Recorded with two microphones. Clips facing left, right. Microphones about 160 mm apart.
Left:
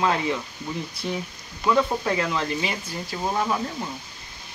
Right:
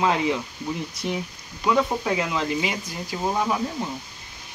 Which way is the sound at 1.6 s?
10° right (ahead or behind).